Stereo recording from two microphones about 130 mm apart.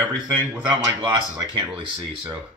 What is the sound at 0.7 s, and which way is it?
Speech, 35° right (ahead or behind).